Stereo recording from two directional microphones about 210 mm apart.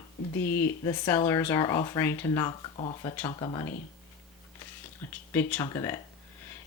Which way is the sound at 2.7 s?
25° left (ahead or behind).